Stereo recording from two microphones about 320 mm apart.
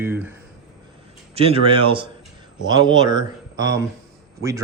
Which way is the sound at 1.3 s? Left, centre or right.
Centre.